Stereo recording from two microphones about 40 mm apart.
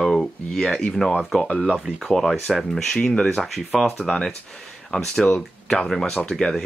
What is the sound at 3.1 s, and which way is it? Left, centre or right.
Speech, centre.